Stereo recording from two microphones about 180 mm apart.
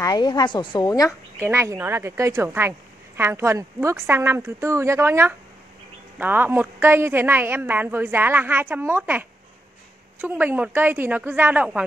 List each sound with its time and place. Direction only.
0.0 s a woman's voice: 20° left (ahead or behind)
1.4 s a woman's voice: 15° right (ahead or behind)
10.2 s a woman's voice: 10° right (ahead or behind)